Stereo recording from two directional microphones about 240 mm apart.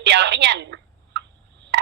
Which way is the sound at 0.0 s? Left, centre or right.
Right.